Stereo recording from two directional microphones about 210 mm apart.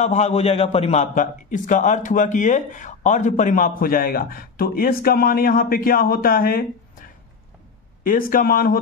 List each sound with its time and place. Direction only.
0.0 s a man's voice: 35° left (ahead or behind)